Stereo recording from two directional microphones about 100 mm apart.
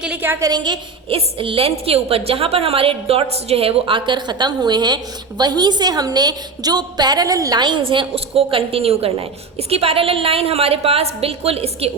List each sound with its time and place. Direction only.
0.0 s a woman's voice: 10° right (ahead or behind)
0.3 s a woman's voice: 30° right (ahead or behind)
1.1 s a woman's voice: 65° right (ahead or behind)
1.8 s a woman's voice: 75° right (ahead or behind); by 7.6 s 35° right (ahead or behind)
7.6 s a woman's voice: 55° right (ahead or behind); by 9.1 s 75° right (ahead or behind)
9.6 s a woman's voice: 90° right